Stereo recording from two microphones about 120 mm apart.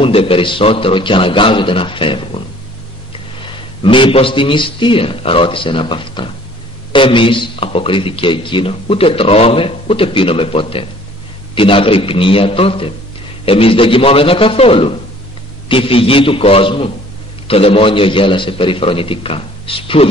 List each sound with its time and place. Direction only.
0.0 s a man's voice: 50° left (ahead or behind)
3.8 s a man's voice: 45° left (ahead or behind)